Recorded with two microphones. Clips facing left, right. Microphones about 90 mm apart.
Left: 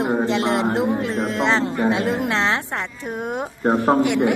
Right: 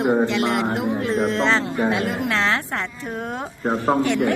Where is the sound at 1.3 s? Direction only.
15° left (ahead or behind).